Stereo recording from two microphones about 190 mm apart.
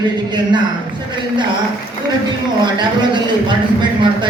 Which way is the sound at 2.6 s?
25° right (ahead or behind).